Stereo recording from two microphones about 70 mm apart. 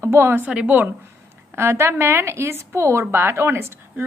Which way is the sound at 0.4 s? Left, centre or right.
Centre.